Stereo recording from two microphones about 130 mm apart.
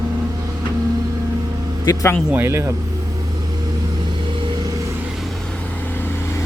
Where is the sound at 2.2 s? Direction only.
20° right (ahead or behind).